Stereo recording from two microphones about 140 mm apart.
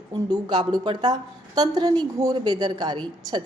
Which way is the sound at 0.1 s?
30° right (ahead or behind).